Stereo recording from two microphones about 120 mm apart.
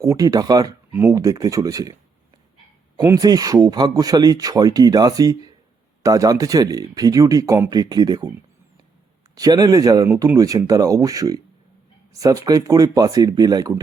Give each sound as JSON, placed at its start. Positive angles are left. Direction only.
{"t": 0.0, "sound": "speech", "side_deg": -30}
{"t": 3.0, "sound": "speech", "side_deg": -30}
{"t": 9.3, "sound": "speech", "side_deg": -35}